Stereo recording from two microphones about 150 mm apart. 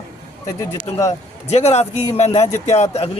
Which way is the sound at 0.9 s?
25° left (ahead or behind).